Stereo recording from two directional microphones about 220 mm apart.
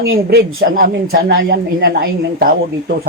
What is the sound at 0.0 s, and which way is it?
A woman's voice, 45° right (ahead or behind).